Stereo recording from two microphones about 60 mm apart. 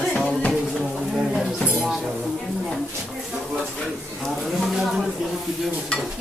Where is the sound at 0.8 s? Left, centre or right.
Centre.